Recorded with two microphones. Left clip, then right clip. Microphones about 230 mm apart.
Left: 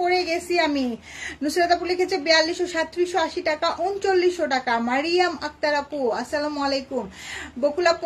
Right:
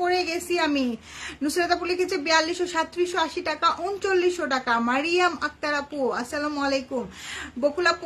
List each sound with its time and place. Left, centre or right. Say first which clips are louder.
0.0 s a woman's voice: left 2 dB; centre